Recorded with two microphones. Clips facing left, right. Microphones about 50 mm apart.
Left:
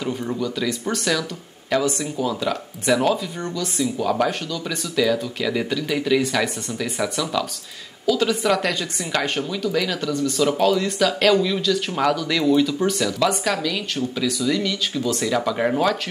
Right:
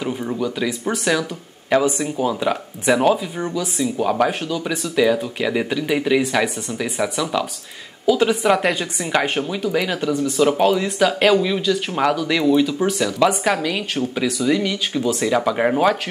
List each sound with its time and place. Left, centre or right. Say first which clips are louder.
0.0 s speech: right 2 dB; centre